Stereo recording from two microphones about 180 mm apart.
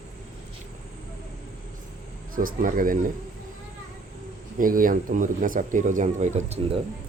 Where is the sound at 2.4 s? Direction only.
50° right (ahead or behind).